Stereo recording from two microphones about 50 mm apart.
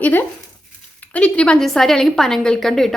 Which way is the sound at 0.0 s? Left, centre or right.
Left.